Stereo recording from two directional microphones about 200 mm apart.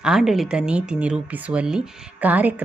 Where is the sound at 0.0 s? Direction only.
Centre (ahead or behind).